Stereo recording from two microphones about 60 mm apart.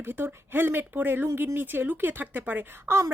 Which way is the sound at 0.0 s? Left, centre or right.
Right.